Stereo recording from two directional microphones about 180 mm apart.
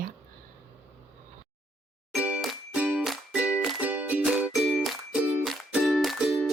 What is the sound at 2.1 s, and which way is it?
Music, 5° right (ahead or behind).